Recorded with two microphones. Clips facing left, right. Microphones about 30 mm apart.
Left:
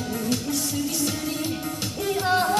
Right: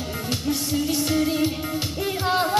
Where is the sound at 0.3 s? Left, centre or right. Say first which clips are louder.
Right 3 dB; right.